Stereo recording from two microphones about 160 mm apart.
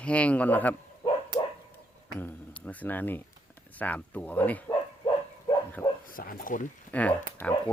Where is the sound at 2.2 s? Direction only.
10° left (ahead or behind).